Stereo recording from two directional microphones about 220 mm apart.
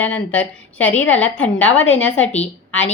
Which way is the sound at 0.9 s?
60° left (ahead or behind).